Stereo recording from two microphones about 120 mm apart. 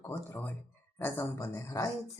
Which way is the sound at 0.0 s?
20° left (ahead or behind).